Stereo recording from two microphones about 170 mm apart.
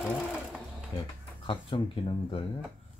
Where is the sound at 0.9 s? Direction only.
25° left (ahead or behind).